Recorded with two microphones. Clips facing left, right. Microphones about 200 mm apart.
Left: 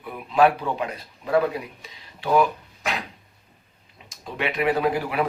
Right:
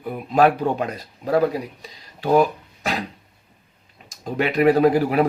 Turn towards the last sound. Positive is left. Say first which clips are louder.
# right 7 dB
turn(degrees=-40)  # may be behind; listen again after turning